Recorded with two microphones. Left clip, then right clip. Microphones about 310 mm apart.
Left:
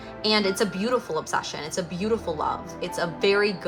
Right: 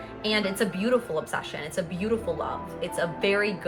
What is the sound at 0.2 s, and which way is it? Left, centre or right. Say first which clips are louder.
A woman's voice: left 3 dB; centre.